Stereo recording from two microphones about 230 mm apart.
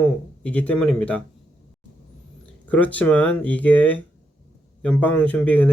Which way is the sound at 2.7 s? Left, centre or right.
Centre.